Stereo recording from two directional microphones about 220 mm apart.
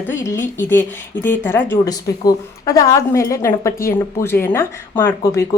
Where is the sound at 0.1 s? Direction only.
10° left (ahead or behind).